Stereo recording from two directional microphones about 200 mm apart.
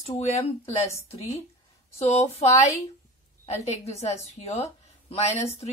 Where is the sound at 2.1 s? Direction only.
35° left (ahead or behind).